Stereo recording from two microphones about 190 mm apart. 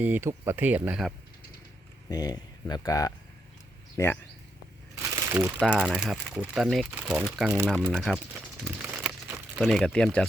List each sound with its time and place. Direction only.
0.0 s speech: 10° right (ahead or behind)
2.0 s speech: 20° left (ahead or behind)
5.1 s speech: 10° right (ahead or behind)
8.6 s crumpling: 10° right (ahead or behind)
9.6 s speech: centre (ahead or behind)